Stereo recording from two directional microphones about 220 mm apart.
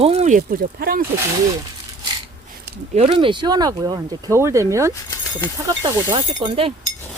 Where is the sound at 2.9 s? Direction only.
25° right (ahead or behind).